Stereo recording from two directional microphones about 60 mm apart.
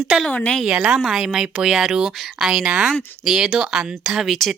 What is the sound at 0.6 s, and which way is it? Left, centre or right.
Speech, centre.